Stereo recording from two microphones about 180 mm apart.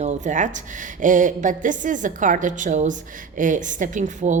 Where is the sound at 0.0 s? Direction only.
40° right (ahead or behind).